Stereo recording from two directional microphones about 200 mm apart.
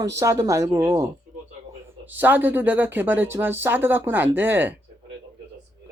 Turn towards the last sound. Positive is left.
turn(degrees=-10)  # may be behind; listen again after turning